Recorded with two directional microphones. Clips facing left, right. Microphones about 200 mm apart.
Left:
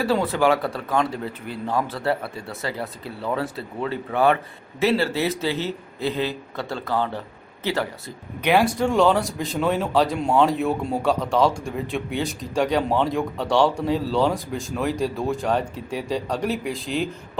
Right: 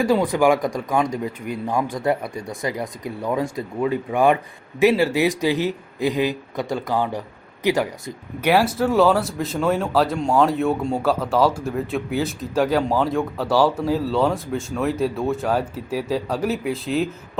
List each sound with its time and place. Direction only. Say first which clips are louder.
0.0 s a man's voice: right 3 dB; 15° right (ahead or behind)
8.4 s speech: right 1 dB; 5° right (ahead or behind)